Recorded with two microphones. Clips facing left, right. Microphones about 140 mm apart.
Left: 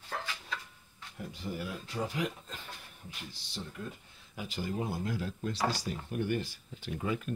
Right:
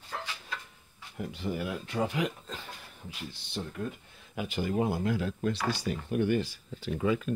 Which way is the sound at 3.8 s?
80° right.